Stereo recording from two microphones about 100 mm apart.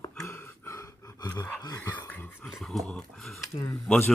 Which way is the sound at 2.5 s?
Centre (ahead or behind).